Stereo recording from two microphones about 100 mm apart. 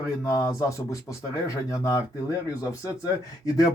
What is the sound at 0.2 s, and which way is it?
Speech, 35° left (ahead or behind).